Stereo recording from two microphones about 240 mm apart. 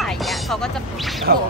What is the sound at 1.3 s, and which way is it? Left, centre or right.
Speech, right.